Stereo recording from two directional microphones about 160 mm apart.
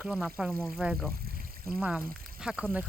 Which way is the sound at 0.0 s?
5° right (ahead or behind).